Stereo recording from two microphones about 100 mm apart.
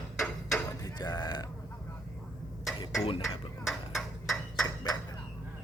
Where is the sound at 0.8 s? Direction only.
45° left (ahead or behind).